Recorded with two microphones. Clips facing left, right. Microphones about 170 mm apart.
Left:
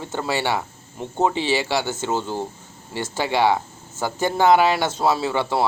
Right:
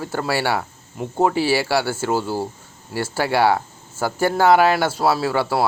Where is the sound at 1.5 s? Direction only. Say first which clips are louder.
Right 3 dB; 10° right (ahead or behind).